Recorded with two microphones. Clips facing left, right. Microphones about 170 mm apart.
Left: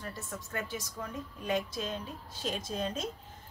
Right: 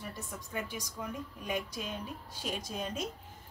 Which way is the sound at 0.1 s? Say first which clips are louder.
Left 1 dB; 15° right (ahead or behind).